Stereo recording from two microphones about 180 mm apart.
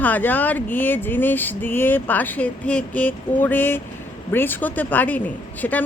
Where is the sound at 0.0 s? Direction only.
10° left (ahead or behind).